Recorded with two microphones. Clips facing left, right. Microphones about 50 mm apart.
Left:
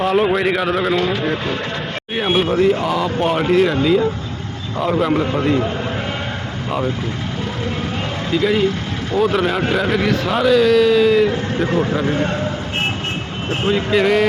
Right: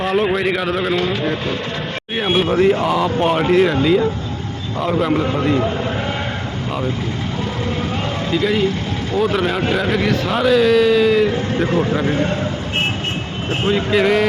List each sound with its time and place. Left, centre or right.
0.0 s a sound: centre
0.3 s a man's voice: centre
8.3 s a man's voice: centre
13.7 s a man's voice: centre